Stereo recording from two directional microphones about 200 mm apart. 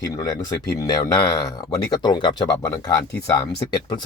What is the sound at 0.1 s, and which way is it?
Speech, 15° left (ahead or behind).